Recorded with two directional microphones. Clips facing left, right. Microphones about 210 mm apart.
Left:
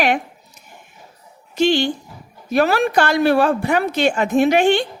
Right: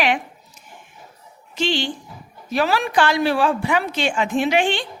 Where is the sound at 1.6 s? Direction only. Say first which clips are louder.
Left 6 dB; 45° left (ahead or behind).